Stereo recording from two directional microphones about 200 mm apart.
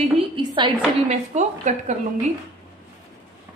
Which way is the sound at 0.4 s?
25° right (ahead or behind).